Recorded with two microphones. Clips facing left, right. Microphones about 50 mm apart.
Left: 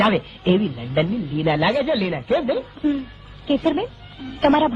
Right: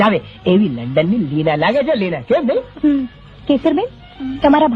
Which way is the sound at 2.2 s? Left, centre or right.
Centre.